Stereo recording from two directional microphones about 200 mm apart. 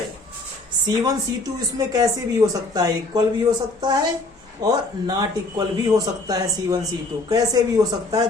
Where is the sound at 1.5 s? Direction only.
20° right (ahead or behind).